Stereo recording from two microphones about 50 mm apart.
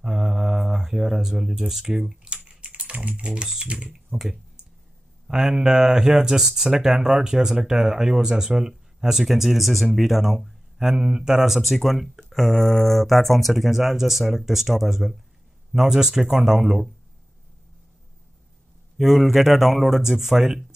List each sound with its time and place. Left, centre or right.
0.0 s a sound: centre
2.0 s typing: centre
3.6 s speech: right
4.1 s speech: centre
18.9 s speech: centre